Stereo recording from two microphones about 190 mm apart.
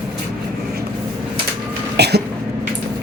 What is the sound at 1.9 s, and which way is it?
Cough, 60° right (ahead or behind).